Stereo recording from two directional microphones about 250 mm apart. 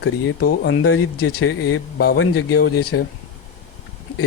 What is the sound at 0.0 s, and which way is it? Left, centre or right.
Speech, left.